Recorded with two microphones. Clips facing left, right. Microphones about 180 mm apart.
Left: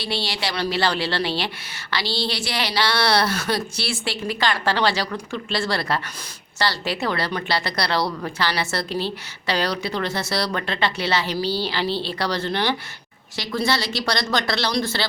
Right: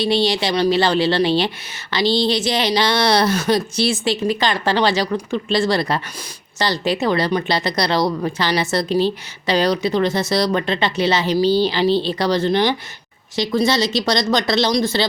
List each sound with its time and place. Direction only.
0.0 s a woman's voice: 20° right (ahead or behind)